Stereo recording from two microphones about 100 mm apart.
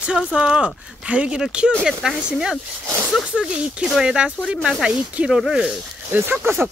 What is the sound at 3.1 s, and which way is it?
Speech, 5° right (ahead or behind).